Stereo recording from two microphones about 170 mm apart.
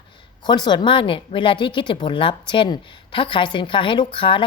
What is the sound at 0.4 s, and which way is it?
A woman's voice, 25° left (ahead or behind).